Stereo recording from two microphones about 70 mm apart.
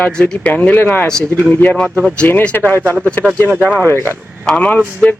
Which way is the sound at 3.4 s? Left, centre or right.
Right.